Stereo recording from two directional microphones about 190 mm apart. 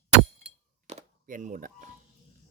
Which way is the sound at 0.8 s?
40° right (ahead or behind).